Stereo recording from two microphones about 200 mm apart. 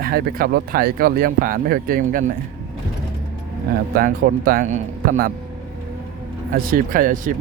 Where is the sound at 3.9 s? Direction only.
45° right (ahead or behind).